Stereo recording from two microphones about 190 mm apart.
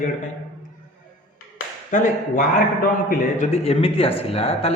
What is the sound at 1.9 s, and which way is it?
A man's voice, 40° left (ahead or behind).